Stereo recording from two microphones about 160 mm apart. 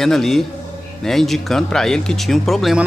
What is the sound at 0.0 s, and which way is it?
Speech, centre (ahead or behind).